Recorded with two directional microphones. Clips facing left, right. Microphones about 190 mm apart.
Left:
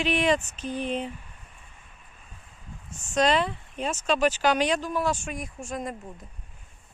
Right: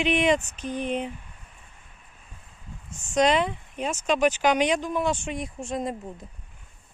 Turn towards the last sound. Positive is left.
turn(degrees=-25)  # may be behind; listen again after turning